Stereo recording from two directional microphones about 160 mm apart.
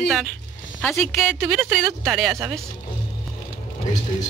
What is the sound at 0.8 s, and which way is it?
Speech, 15° left (ahead or behind).